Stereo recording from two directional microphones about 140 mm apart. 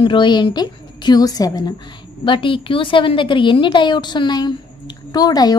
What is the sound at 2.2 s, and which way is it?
A woman's voice, 35° left (ahead or behind).